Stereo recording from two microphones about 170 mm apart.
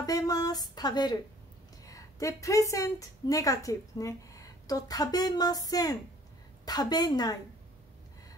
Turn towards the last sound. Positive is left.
turn(degrees=25)  # may be behind; listen again after turning